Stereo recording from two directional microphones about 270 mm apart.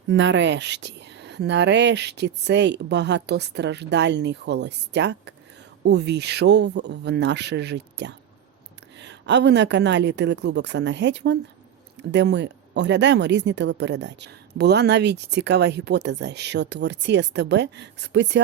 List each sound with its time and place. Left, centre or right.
0.1 s speech: right